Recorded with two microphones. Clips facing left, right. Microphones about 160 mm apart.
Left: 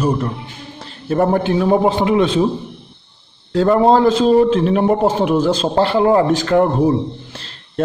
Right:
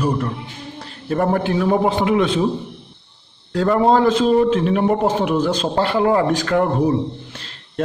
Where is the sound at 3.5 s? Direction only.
25° left (ahead or behind).